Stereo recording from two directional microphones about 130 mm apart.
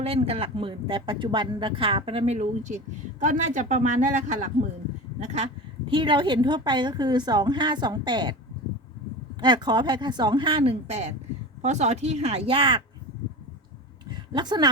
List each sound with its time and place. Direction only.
0.0 s a woman's voice: 50° right (ahead or behind); by 4.4 s 70° right (ahead or behind)
5.2 s a woman's voice: 55° right (ahead or behind); by 8.4 s 35° right (ahead or behind)
9.4 s a woman's voice: 35° right (ahead or behind)
14.3 s a woman's voice: 35° right (ahead or behind)